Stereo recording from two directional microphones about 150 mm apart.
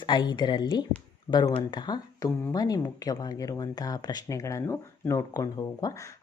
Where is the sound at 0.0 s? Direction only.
30° left (ahead or behind).